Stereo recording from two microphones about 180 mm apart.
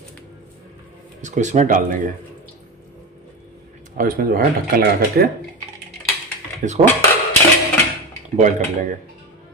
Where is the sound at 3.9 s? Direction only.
50° right (ahead or behind).